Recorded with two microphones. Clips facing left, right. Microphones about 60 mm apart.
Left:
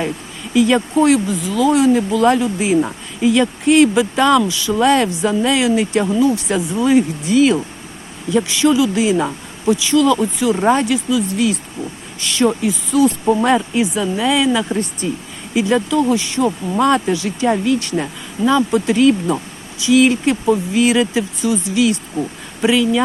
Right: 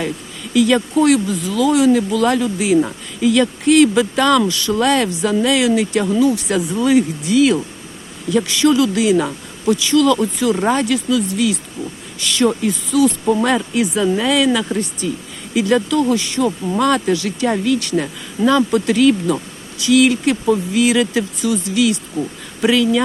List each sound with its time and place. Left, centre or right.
0.5 s speech: left
1.3 s speech: centre
1.7 s speech: left; by 4.9 s centre
4.9 s speech: left
11.3 s speech: left
15.0 s speech: left
15.5 s speech: centre
17.9 s speech: centre; by 22.3 s left
22.6 s speech: centre